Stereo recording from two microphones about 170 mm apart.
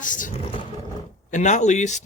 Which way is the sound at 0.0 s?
50° left (ahead or behind).